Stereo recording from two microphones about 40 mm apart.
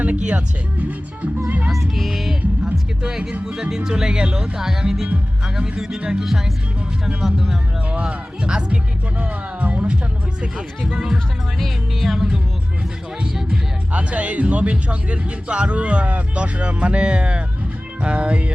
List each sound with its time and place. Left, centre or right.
0.0 s music: right
1.7 s music: centre
3.1 s speech: centre
7.9 s speech: right
9.6 s music: right
11.6 s music: centre
13.9 s speech: right